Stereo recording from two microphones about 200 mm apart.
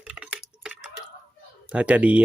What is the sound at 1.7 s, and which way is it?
Speech, 5° right (ahead or behind).